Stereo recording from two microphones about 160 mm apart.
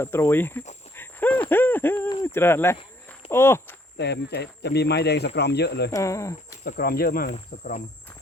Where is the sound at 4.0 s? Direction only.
90° left.